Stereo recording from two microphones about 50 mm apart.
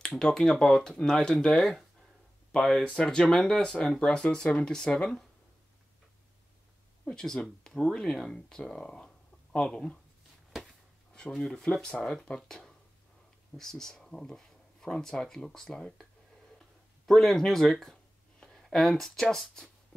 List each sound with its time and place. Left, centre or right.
0.1 s speech: centre
1.5 s speech: centre
2.8 s speech: centre
7.1 s speech: centre
11.3 s speech: centre
16.5 s a sound: centre
18.7 s speech: centre